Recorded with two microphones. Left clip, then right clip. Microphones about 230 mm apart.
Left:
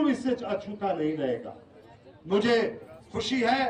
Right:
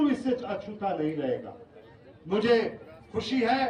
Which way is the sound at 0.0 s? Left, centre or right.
Left.